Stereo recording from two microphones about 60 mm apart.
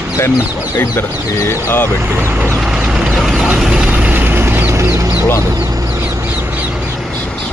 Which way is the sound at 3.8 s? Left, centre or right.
Right.